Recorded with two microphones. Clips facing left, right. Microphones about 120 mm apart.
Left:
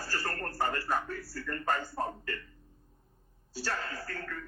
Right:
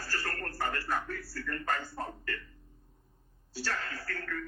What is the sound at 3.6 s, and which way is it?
Speech, 15° left (ahead or behind).